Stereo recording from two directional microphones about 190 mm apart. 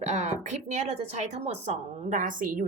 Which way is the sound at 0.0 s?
35° right (ahead or behind).